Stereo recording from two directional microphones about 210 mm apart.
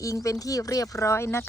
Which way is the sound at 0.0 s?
15° left (ahead or behind).